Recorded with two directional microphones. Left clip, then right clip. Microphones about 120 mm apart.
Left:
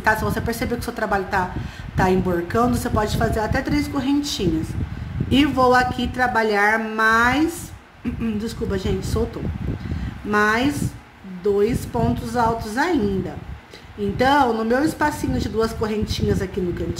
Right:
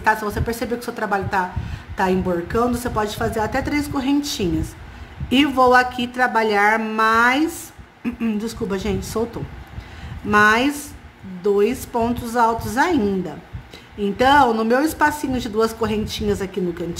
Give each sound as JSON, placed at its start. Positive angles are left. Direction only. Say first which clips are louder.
{"t": 0.0, "sound": "a woman's voice", "louder": "right 1 dB", "side_deg": -5}
{"t": 8.0, "sound": "speech", "louder": "right 2 dB", "side_deg": -30}
{"t": 8.4, "sound": "a woman's voice", "louder": "right 1 dB", "side_deg": -20}
{"t": 10.3, "sound": "a woman's voice", "louder": "right 4 dB", "side_deg": -15}
{"t": 14.1, "sound": "a woman's voice", "louder": "right 3 dB", "side_deg": -15}